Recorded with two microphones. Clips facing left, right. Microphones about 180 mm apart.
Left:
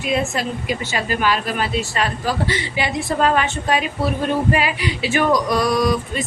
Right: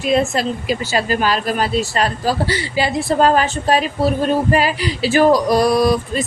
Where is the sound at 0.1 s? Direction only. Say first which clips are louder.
Right 5 dB; 35° right (ahead or behind).